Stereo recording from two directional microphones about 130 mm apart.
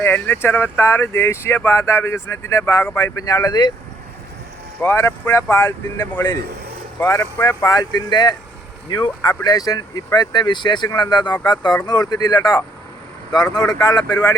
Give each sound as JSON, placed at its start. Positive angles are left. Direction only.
{"t": 0.0, "sound": "speech", "side_deg": 15}
{"t": 4.8, "sound": "speech", "side_deg": 20}
{"t": 7.0, "sound": "speech", "side_deg": 20}